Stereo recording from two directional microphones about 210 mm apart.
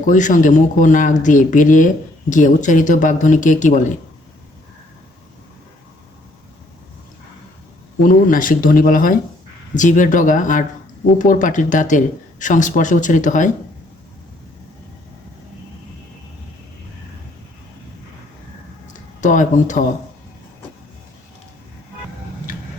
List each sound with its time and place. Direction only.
0.1 s speech: 35° left (ahead or behind)
8.0 s speech: 40° left (ahead or behind)
19.2 s speech: 35° left (ahead or behind)